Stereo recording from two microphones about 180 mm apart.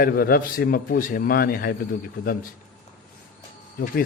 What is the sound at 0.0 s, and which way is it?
A man's voice, 55° left (ahead or behind).